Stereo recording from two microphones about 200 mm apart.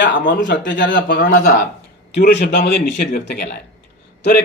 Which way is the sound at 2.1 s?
55° left (ahead or behind).